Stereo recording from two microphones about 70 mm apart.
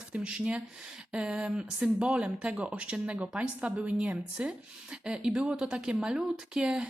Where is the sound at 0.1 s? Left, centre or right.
Centre.